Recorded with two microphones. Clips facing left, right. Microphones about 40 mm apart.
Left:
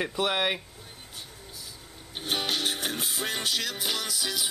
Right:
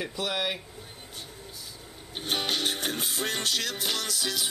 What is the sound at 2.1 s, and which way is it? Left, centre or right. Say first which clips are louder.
Music: even; centre.